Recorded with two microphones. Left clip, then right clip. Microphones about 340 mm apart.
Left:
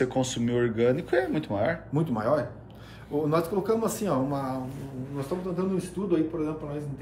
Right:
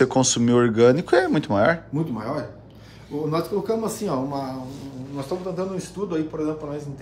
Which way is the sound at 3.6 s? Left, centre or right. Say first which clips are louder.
Right 2 dB; centre.